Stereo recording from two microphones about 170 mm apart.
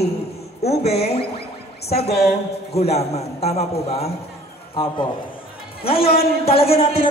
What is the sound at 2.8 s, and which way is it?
A woman's voice, 40° left (ahead or behind).